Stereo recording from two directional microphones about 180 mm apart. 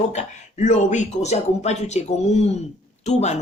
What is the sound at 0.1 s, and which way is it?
Speech, 40° left (ahead or behind).